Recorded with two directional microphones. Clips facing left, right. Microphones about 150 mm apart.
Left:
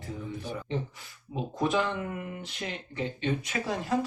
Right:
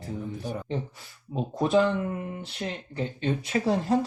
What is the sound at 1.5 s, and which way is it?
Speech, 35° right (ahead or behind).